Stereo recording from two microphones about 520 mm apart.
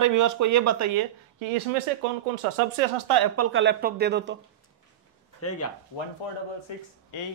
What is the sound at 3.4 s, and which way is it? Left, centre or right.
Speech, right.